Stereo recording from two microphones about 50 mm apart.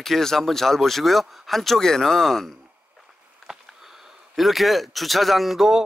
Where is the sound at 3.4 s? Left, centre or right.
Centre.